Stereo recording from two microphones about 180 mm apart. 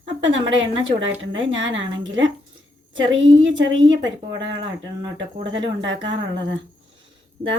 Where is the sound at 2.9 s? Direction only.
90° right.